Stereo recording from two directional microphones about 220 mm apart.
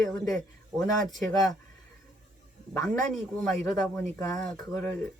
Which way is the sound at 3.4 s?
Centre (ahead or behind).